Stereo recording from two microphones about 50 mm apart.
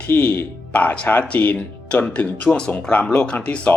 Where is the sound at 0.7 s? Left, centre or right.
Left; by 2.9 s centre.